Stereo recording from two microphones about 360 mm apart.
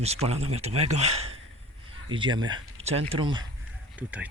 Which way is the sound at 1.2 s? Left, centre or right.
Right.